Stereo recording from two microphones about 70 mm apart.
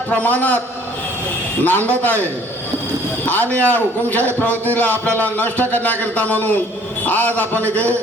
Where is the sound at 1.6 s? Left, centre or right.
Left.